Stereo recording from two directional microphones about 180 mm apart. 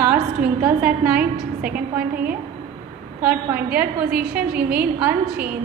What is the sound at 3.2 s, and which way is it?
A woman's voice, 10° right (ahead or behind).